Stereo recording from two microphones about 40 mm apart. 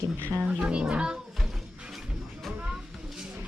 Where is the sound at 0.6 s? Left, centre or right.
Right.